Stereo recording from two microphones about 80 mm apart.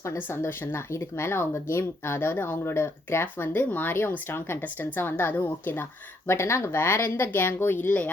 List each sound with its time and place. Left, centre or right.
0.3 s speech: left